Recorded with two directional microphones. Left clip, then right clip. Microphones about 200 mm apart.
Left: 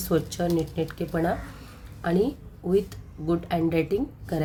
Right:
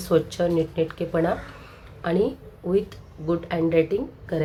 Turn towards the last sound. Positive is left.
turn(degrees=30)  # may be behind; listen again after turning